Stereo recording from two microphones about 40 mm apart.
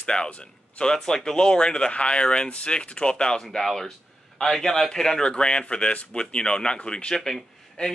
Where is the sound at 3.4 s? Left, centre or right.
Centre.